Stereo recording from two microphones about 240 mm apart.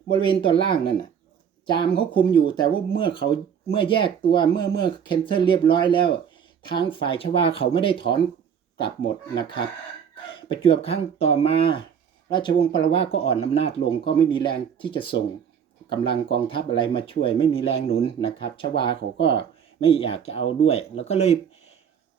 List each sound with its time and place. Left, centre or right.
0.1 s speech: centre
9.4 s speech: centre